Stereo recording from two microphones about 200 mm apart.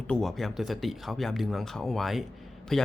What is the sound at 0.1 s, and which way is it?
Speech, centre (ahead or behind).